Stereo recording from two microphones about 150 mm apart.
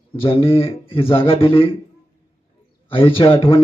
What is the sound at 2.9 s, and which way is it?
Speech, 35° left (ahead or behind).